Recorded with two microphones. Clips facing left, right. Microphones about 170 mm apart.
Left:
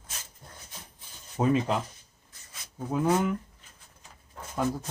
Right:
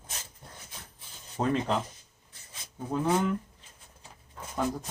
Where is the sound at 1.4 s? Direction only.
10° left (ahead or behind).